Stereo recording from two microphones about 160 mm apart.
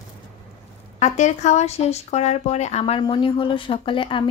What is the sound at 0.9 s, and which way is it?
Speech, 45° left (ahead or behind).